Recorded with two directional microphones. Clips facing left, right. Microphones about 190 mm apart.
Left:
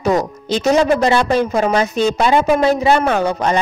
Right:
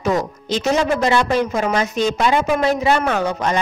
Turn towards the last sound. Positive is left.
turn(degrees=35)  # may be behind; listen again after turning